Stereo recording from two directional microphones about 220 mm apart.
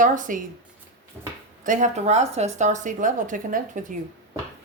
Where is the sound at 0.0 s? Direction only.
35° right (ahead or behind).